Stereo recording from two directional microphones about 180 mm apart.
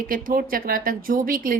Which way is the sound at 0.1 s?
50° right (ahead or behind).